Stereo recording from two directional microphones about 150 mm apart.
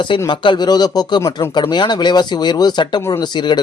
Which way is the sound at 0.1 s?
30° left (ahead or behind).